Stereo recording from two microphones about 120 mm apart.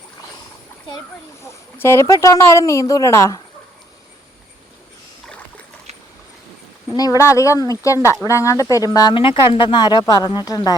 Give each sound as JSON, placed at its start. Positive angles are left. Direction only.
{"t": 1.4, "sound": "speech", "side_deg": 20}
{"t": 6.9, "sound": "speech", "side_deg": 30}
{"t": 9.1, "sound": "speech", "side_deg": 45}